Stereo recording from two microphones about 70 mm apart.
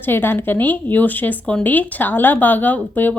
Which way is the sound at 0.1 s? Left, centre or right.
Left.